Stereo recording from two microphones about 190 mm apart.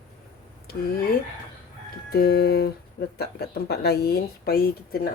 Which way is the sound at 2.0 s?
55° left (ahead or behind).